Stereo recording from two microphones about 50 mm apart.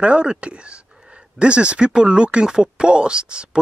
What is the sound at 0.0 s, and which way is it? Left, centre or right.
Speech, right.